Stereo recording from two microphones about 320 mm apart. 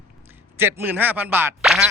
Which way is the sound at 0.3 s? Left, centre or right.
Centre.